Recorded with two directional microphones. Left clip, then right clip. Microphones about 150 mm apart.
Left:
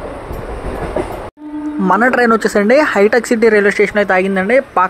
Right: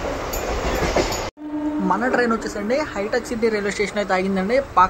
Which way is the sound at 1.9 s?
55° left (ahead or behind).